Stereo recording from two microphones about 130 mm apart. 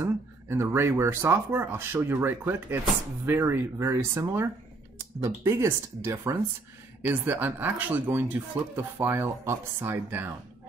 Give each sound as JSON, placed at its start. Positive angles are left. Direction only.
{"t": 0.0, "sound": "speech", "side_deg": -20}